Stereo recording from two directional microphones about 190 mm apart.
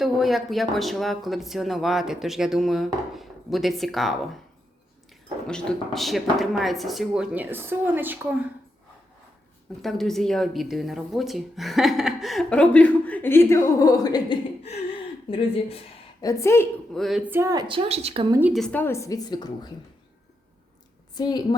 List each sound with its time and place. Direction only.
0.0 s speech: centre (ahead or behind)
5.5 s speech: 5° left (ahead or behind)
9.8 s a woman's voice: centre (ahead or behind); by 15.8 s 30° left (ahead or behind)
16.2 s a woman's voice: 15° left (ahead or behind)
16.9 s speech: centre (ahead or behind); by 18.3 s 25° right (ahead or behind)
18.3 s speech: 10° right (ahead or behind)
18.6 s a woman's voice: 10° left (ahead or behind)
21.2 s a woman's voice: 20° left (ahead or behind)